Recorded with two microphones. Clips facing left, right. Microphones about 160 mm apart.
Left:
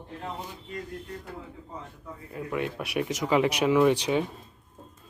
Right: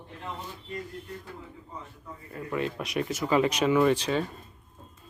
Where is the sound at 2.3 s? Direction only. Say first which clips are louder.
Even; 10° left (ahead or behind).